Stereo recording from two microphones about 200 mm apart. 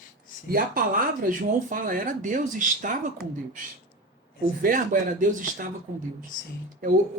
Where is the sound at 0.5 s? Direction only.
45° right (ahead or behind).